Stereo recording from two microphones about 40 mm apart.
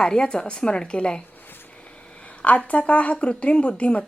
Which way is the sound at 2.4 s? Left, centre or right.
Left.